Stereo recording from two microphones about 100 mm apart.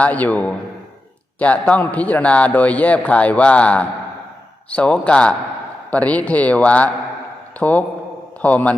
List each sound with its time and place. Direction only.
0.0 s a man's voice: 15° left (ahead or behind)